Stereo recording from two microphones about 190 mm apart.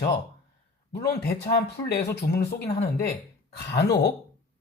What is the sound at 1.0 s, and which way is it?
Speech, 55° left (ahead or behind).